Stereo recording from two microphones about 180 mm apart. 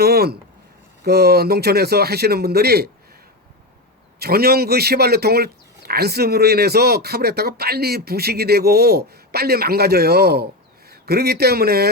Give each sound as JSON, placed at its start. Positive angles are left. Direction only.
{"t": 0.0, "sound": "speech", "side_deg": -60}
{"t": 4.2, "sound": "speech", "side_deg": -60}